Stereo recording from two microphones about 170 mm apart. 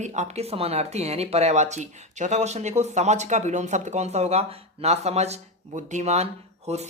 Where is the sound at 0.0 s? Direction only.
40° right (ahead or behind).